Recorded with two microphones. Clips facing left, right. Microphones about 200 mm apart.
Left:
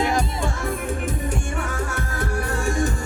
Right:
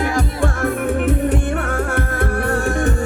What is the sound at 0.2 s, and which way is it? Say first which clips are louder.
Music: right 5 dB; 55° right (ahead or behind).